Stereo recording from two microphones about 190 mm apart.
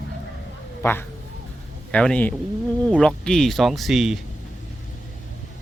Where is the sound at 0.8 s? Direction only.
10° left (ahead or behind).